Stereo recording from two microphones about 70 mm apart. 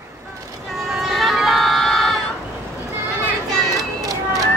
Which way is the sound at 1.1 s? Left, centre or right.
Centre.